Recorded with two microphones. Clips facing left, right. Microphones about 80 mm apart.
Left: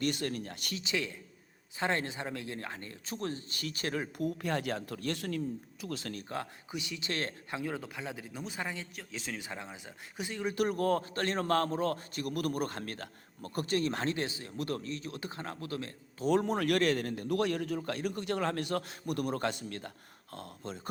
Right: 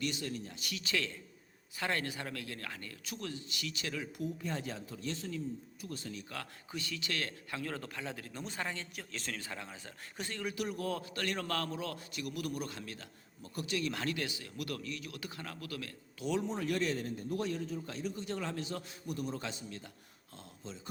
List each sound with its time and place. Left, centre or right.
0.0 s a man's voice: left
0.8 s speech: centre; by 4.3 s left
4.4 s a man's voice: left
5.8 s speech: left
6.2 s speech: left
6.7 s a man's voice: centre
7.1 s a man's voice: left
7.5 s a man's voice: centre
10.5 s a man's voice: left
16.3 s a man's voice: left